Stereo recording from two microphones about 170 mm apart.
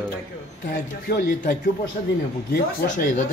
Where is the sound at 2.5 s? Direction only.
60° left (ahead or behind).